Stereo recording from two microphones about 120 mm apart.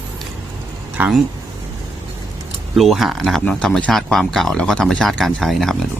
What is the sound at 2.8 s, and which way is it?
Speech, centre (ahead or behind).